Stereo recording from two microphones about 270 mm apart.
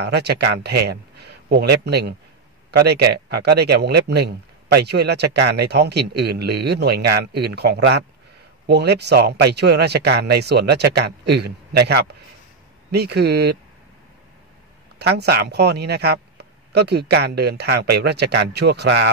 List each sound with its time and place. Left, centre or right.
0.0 s speech: right
15.0 s a man's voice: right